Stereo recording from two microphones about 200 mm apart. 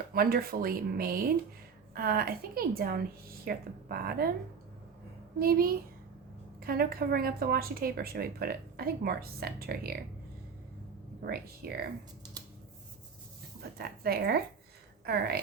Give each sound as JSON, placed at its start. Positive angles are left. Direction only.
{"t": 0.1, "sound": "a woman's voice", "side_deg": -50}
{"t": 5.4, "sound": "a woman's voice", "side_deg": -45}
{"t": 11.3, "sound": "a woman's voice", "side_deg": -50}
{"t": 13.6, "sound": "a woman's voice", "side_deg": -50}